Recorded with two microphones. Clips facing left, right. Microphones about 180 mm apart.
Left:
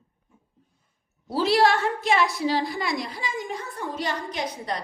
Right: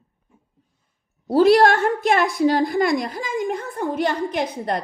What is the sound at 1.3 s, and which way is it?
A woman's voice, 50° right (ahead or behind).